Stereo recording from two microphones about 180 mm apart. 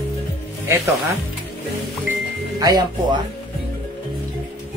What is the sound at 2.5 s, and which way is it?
Speech, 20° right (ahead or behind).